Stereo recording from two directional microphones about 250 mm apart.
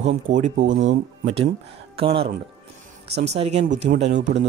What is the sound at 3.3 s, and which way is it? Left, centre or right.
Speech, right.